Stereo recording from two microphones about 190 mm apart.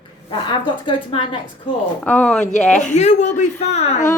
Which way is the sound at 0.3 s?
25° left (ahead or behind).